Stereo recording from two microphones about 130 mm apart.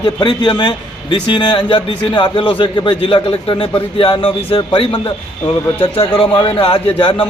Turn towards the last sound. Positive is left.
turn(degrees=40)  # may be behind; listen again after turning